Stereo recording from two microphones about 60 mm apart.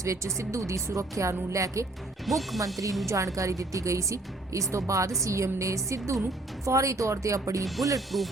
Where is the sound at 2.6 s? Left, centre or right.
Right.